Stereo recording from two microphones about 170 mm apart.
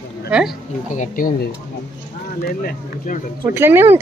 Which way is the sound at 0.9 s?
50° left (ahead or behind).